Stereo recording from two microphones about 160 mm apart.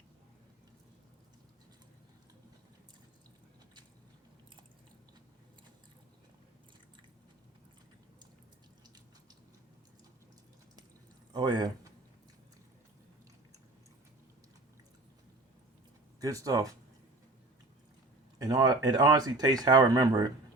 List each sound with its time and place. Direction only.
11.3 s a man's voice: 25° right (ahead or behind)
16.2 s speech: 20° right (ahead or behind)
18.4 s speech: 25° right (ahead or behind)